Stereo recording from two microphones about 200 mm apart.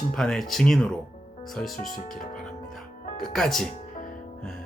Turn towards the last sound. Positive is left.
turn(degrees=0)  # may be behind; listen again after turning